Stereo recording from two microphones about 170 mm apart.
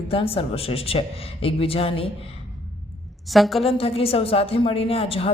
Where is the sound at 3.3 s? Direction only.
Centre (ahead or behind).